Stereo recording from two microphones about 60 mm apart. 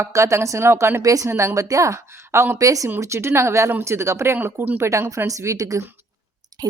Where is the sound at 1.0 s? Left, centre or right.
Right.